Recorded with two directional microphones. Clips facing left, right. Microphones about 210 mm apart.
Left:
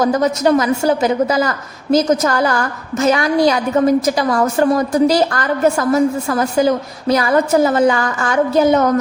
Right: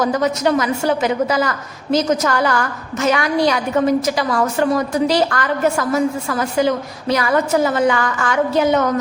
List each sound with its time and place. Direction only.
0.0 s a woman's voice: 40° left (ahead or behind)